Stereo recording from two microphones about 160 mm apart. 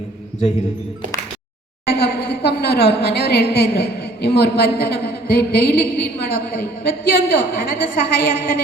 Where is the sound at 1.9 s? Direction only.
90° left.